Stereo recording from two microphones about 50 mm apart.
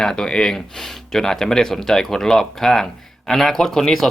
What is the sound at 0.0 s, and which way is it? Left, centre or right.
Speech, centre.